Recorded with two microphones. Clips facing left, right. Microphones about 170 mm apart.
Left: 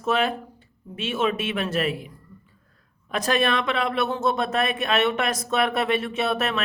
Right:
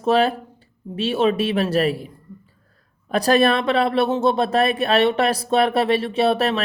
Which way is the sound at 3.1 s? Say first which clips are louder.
Right 6 dB; 35° right (ahead or behind).